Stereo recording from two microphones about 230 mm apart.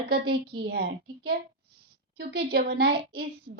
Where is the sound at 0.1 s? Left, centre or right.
Right.